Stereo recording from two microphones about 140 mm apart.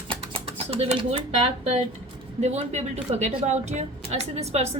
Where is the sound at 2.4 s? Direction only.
50° right (ahead or behind).